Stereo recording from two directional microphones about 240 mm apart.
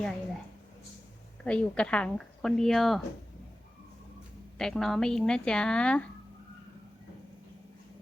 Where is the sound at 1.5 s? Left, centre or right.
Centre.